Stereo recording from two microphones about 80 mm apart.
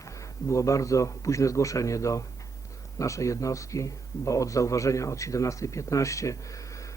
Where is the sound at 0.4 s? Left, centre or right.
Left.